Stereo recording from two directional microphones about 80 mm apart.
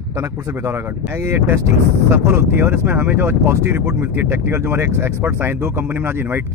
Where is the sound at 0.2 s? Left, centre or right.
Right.